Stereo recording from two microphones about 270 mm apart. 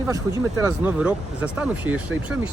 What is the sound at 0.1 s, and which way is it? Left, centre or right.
Speech, centre.